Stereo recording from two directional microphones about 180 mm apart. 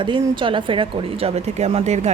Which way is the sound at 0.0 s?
25° right (ahead or behind).